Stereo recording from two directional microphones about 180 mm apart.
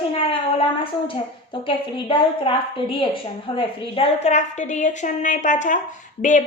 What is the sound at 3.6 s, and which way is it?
A woman's voice, 30° left (ahead or behind).